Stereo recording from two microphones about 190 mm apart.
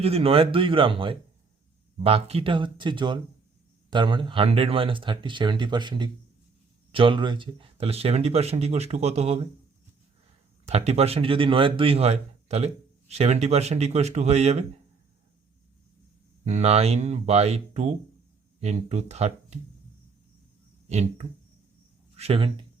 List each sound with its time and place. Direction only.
0.0 s speech: 30° right (ahead or behind)
10.7 s speech: 35° right (ahead or behind)
16.4 s speech: 35° right (ahead or behind)
20.9 s speech: 35° right (ahead or behind)